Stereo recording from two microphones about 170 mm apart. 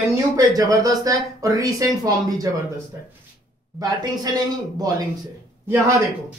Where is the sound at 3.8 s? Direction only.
25° right (ahead or behind).